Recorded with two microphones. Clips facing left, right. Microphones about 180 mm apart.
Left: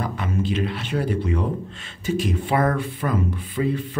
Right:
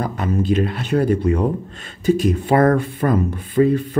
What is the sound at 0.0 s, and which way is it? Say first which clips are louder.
Speech: right 4 dB; 40° right (ahead or behind).